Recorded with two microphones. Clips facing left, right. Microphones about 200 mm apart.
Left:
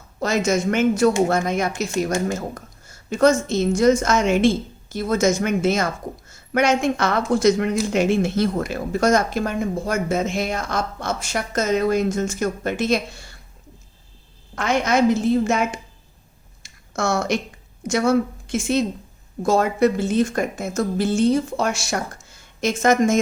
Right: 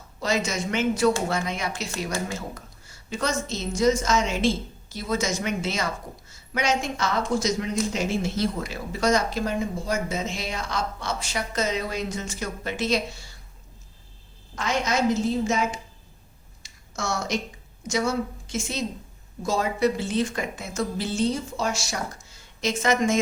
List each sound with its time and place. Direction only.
0.2 s speech: 50° left (ahead or behind)
14.5 s a woman's voice: 60° left (ahead or behind)
16.6 s a sound: 55° left (ahead or behind)
17.8 s a woman's voice: 55° left (ahead or behind)